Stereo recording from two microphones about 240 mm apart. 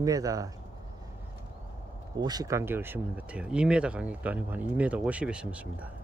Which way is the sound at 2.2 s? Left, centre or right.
Centre.